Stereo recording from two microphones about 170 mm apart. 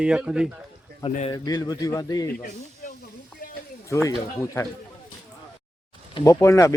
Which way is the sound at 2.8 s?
50° left (ahead or behind).